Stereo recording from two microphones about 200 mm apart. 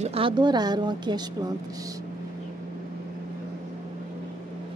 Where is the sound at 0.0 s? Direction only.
30° right (ahead or behind).